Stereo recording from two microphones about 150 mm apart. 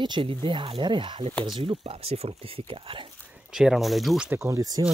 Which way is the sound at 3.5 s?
5° right (ahead or behind).